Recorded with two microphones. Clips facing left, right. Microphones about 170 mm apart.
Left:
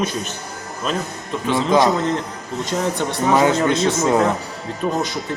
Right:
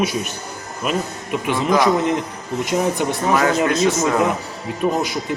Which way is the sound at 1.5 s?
25° left (ahead or behind).